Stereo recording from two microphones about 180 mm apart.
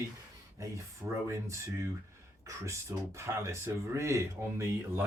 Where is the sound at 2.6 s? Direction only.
15° right (ahead or behind).